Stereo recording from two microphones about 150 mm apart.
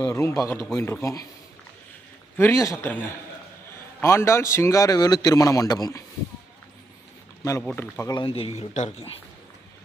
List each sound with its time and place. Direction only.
0.0 s a man's voice: 15° left (ahead or behind)
2.4 s a man's voice: 20° left (ahead or behind)
4.0 s a man's voice: 15° left (ahead or behind)
7.8 s a man's voice: 20° left (ahead or behind)
8.2 s speech: 40° left (ahead or behind)